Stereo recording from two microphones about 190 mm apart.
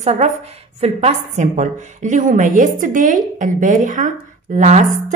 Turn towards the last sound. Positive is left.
turn(degrees=-40)  # may be behind; listen again after turning